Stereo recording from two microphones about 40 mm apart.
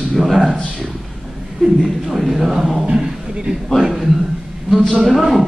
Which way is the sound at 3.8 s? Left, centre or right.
Centre.